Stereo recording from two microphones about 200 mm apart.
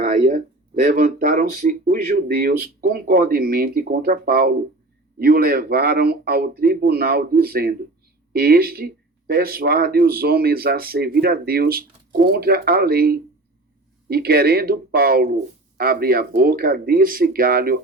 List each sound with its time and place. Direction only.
0.0 s speech: 45° right (ahead or behind)